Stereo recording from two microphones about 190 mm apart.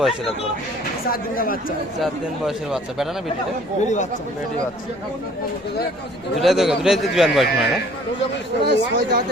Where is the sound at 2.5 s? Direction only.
Centre (ahead or behind).